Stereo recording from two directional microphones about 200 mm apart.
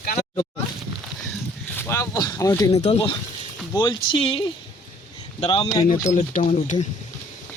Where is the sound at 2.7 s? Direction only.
35° left (ahead or behind).